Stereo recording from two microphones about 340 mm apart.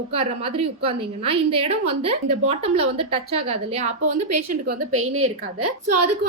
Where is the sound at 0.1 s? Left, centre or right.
Centre.